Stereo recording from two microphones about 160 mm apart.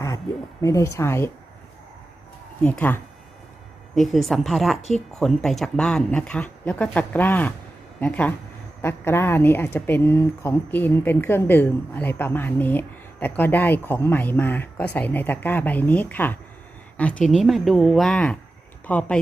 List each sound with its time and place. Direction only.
0.6 s speech: 20° left (ahead or behind)
2.6 s a woman's voice: 5° left (ahead or behind)